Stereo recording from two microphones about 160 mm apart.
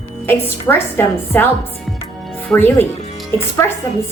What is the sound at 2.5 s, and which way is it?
Speech, 10° left (ahead or behind).